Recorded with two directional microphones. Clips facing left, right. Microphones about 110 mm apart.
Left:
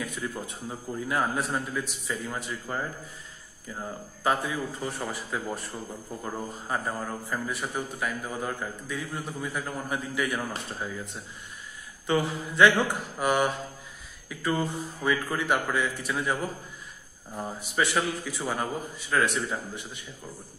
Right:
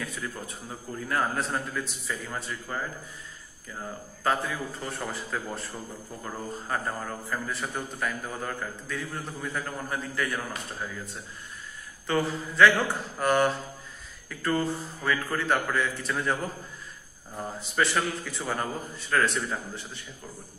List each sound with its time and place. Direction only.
0.0 s a man's voice: 15° left (ahead or behind)
12.1 s a man's voice: 15° left (ahead or behind)
17.4 s a man's voice: 10° left (ahead or behind)